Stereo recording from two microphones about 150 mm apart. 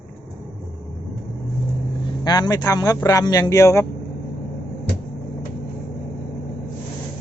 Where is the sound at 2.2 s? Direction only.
25° left (ahead or behind).